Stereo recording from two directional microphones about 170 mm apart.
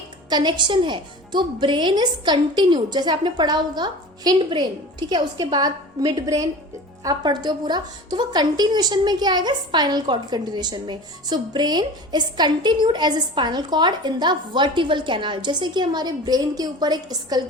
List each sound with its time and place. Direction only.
0.3 s a woman's voice: 25° right (ahead or behind)